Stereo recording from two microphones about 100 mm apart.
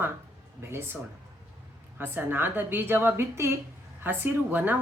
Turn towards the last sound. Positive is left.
turn(degrees=-20)  # may be behind; listen again after turning